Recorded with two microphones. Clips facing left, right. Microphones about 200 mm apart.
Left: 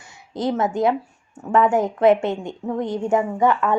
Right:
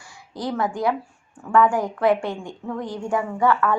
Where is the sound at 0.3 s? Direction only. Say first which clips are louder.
Left 4 dB; 20° left (ahead or behind).